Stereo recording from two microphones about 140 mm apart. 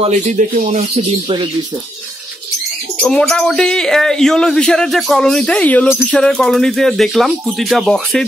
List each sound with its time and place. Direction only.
0.0 s speech: 55° right (ahead or behind)
3.0 s speech: 5° left (ahead or behind)